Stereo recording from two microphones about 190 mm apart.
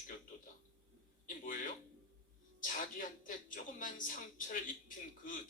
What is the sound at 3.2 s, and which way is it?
Speech, 45° left (ahead or behind).